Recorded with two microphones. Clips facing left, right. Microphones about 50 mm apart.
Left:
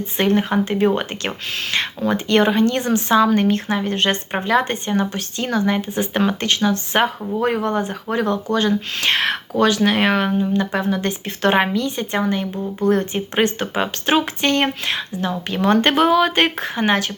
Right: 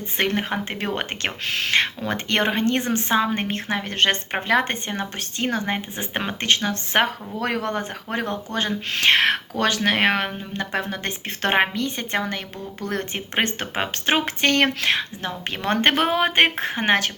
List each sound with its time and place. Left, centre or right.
0.0 s speech: right
3.8 s speech: right